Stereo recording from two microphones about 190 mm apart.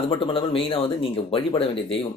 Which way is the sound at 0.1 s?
25° left (ahead or behind).